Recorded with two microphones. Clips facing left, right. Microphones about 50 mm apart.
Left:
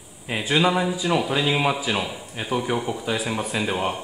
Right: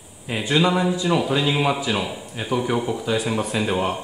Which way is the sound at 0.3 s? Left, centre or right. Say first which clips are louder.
Right 1 dB; centre.